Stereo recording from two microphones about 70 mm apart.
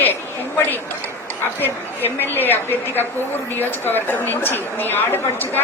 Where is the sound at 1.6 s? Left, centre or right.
Left.